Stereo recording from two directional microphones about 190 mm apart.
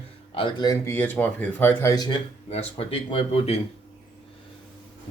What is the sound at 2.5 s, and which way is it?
Speech, 30° left (ahead or behind).